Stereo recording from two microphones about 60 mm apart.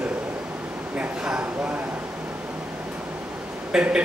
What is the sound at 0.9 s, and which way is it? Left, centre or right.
Speech, right.